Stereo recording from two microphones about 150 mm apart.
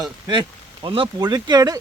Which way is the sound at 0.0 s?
30° right (ahead or behind).